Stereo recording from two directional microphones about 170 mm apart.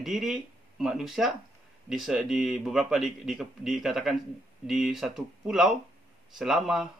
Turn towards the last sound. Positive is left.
turn(degrees=0)  # may be behind; listen again after turning